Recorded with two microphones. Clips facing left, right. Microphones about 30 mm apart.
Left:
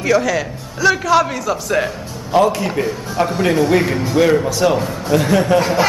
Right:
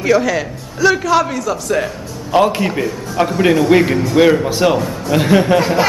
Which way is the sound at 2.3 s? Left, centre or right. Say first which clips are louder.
Right 1 dB; right.